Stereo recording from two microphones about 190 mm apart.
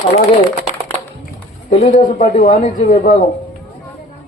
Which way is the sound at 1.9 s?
45° left (ahead or behind).